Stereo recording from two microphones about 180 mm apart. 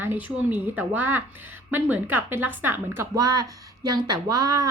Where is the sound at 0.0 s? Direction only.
10° right (ahead or behind).